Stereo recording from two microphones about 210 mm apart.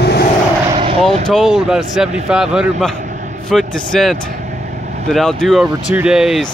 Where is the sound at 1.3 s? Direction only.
Centre (ahead or behind).